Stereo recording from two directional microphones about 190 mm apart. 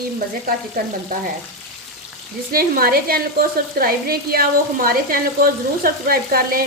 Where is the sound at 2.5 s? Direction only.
50° right (ahead or behind).